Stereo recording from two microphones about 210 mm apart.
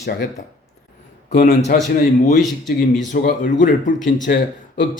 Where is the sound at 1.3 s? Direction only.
40° left (ahead or behind).